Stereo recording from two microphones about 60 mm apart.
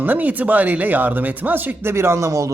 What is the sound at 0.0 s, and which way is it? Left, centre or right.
Speech, right.